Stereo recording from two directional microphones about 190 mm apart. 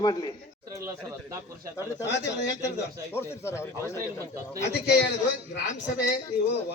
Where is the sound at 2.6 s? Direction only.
15° left (ahead or behind).